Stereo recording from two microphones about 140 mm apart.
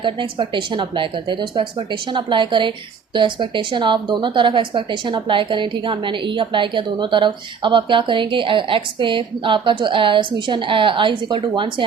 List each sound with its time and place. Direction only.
0.0 s speech: 35° right (ahead or behind)